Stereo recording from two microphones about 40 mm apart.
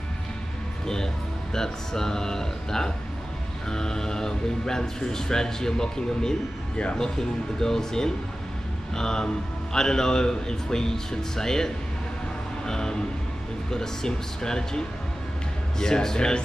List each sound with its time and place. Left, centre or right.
0.8 s a man's voice: centre
6.8 s speech: left
7.2 s a man's voice: centre
12.6 s a sound: centre
13.7 s a man's voice: centre